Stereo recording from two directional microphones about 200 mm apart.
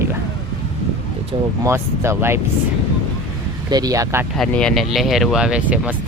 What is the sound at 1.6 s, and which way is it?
Speech, 15° right (ahead or behind).